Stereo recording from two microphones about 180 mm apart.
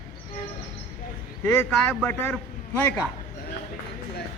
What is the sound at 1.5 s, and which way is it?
Speech, 10° left (ahead or behind).